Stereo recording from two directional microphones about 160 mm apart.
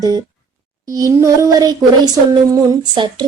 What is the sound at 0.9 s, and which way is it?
Speech, 20° right (ahead or behind).